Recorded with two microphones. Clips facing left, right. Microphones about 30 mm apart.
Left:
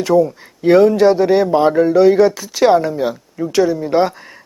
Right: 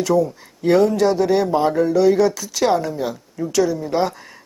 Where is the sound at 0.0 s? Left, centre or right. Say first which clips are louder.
Left 4 dB; left.